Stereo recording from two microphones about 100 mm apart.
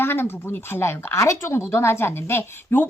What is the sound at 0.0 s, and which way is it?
Speech, 20° left (ahead or behind).